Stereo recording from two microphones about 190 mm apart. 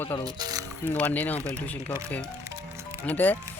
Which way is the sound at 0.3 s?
20° right (ahead or behind).